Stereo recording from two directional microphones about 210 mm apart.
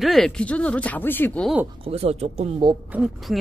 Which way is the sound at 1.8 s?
30° right (ahead or behind).